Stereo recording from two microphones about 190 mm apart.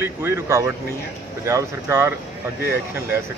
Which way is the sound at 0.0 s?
15° right (ahead or behind).